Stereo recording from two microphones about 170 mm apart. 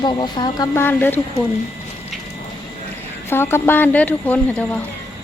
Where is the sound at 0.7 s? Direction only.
10° left (ahead or behind).